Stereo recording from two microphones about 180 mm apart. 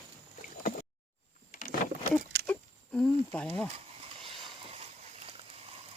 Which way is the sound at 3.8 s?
35° right (ahead or behind).